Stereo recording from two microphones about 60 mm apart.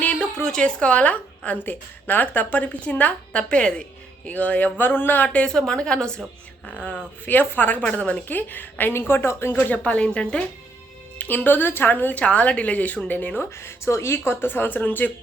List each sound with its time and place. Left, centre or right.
0.3 s a sound: centre
0.6 s a woman's voice: left
5.5 s a woman's voice: centre
7.3 s a woman's voice: left
9.6 s a woman's voice: left
11.2 s a woman's voice: left
13.4 s a woman's voice: left